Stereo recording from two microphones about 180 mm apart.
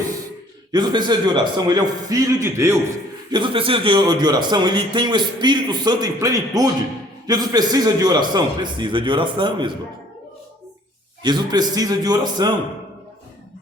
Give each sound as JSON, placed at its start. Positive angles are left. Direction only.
{"t": 0.7, "sound": "a man's voice", "side_deg": -25}
{"t": 3.3, "sound": "a man's voice", "side_deg": -30}
{"t": 11.2, "sound": "a man's voice", "side_deg": -25}